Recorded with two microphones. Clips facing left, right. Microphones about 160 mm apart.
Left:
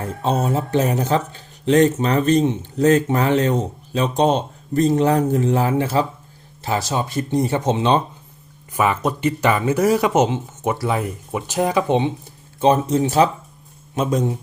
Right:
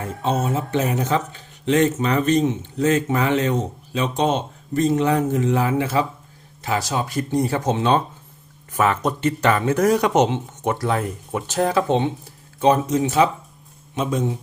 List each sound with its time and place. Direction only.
0.4 s speech: 35° left (ahead or behind); by 8.0 s 20° left (ahead or behind)
8.7 s speech: 10° left (ahead or behind)
12.5 s speech: 25° left (ahead or behind)